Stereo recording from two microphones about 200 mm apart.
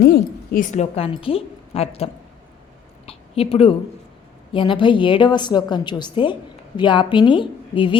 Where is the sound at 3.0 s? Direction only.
30° left (ahead or behind).